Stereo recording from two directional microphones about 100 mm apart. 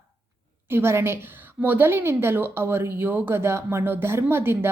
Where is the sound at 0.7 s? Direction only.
25° right (ahead or behind).